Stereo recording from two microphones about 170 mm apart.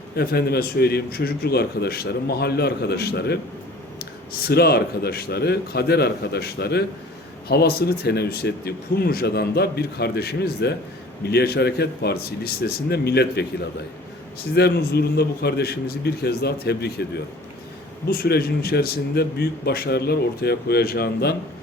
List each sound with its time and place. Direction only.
0.2 s speech: 65° left (ahead or behind)
14.5 s speech: 70° left (ahead or behind)
18.1 s speech: 65° left (ahead or behind)